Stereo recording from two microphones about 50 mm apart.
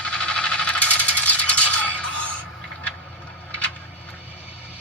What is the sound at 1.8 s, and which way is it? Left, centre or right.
Music, left.